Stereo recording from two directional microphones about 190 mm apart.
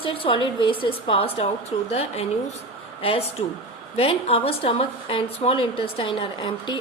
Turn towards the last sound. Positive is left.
turn(degrees=25)  # may be behind; listen again after turning